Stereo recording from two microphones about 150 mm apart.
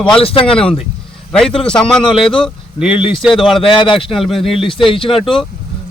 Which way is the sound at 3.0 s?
35° left (ahead or behind).